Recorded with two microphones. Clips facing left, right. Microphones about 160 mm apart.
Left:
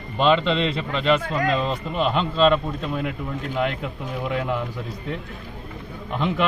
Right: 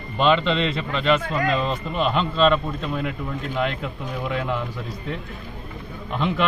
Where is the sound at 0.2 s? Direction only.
35° left (ahead or behind); by 4.6 s 15° left (ahead or behind).